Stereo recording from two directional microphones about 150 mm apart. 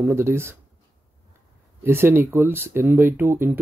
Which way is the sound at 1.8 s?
15° right (ahead or behind).